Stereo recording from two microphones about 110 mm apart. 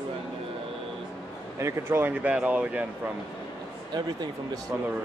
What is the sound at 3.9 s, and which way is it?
Speech, 40° right (ahead or behind).